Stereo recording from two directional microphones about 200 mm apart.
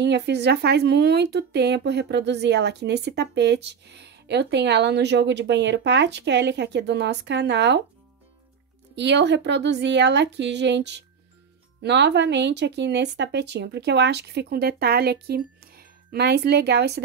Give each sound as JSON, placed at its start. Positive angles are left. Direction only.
{"t": 0.0, "sound": "speech", "side_deg": -60}
{"t": 8.9, "sound": "speech", "side_deg": -60}